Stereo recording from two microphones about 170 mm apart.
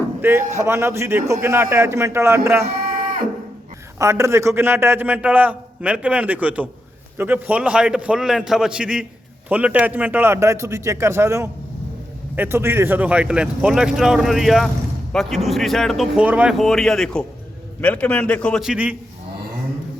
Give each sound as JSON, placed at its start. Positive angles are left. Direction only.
{"t": 0.2, "sound": "a man's voice", "side_deg": -15}
{"t": 2.8, "sound": "livestock", "side_deg": -60}
{"t": 3.9, "sound": "a man's voice", "side_deg": -15}